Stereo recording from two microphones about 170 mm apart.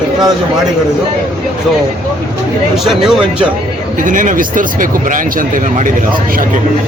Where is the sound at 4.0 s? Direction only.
50° right (ahead or behind).